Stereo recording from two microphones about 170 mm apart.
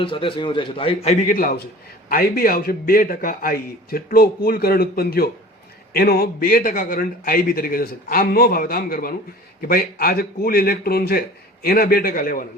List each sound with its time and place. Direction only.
0.0 s a man's voice: 30° left (ahead or behind)
1.2 s a man's voice: 55° left (ahead or behind)